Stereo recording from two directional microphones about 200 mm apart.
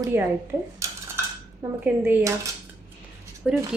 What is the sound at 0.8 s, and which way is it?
Dishes, 15° right (ahead or behind).